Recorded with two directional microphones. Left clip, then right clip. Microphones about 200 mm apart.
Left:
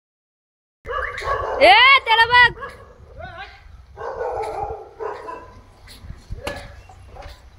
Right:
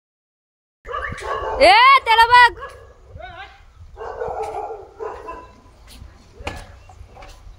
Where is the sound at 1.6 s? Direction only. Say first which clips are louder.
Right 1 dB; 25° right (ahead or behind).